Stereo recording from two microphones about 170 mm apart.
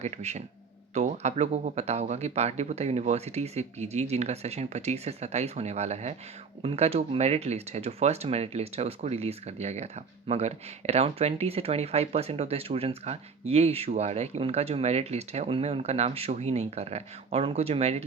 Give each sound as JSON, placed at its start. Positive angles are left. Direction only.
{"t": 0.0, "sound": "speech", "side_deg": -40}